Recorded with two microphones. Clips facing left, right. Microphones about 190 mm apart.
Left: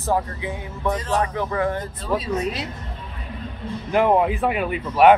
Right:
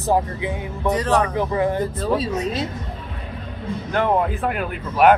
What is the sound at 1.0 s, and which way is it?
Speech, 70° right (ahead or behind).